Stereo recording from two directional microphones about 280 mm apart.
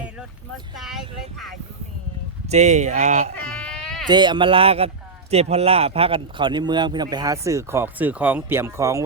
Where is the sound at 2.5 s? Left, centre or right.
Right.